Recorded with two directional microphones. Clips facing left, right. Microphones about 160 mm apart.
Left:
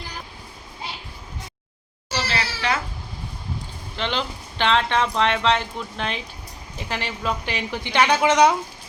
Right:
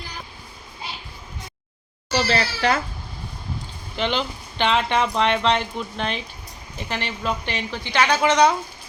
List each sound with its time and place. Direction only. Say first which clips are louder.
2.2 s speech: right 4 dB; 35° right (ahead or behind)
3.9 s speech: right 2 dB; 5° right (ahead or behind)
7.9 s speech: left 1 dB; 15° left (ahead or behind)